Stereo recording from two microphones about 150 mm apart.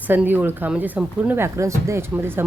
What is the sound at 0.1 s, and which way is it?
Speech, 15° right (ahead or behind).